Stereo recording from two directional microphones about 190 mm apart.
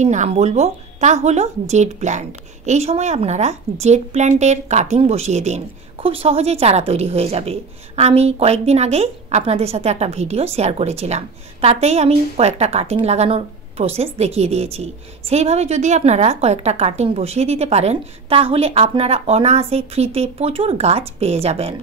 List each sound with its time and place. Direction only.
0.0 s a woman's voice: 40° right (ahead or behind)